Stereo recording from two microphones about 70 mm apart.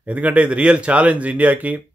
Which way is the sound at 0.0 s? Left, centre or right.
Centre.